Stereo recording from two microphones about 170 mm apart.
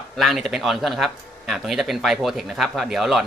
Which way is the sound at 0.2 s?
Centre (ahead or behind).